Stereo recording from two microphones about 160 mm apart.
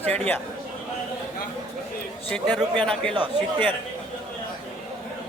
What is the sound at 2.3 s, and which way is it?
Speech, 5° left (ahead or behind).